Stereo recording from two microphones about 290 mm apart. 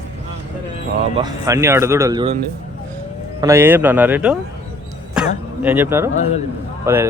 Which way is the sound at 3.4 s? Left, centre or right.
Centre.